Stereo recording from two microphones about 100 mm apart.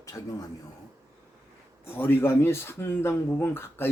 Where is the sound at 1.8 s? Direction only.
20° left (ahead or behind).